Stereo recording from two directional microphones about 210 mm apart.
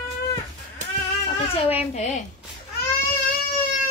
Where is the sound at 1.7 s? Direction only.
30° left (ahead or behind).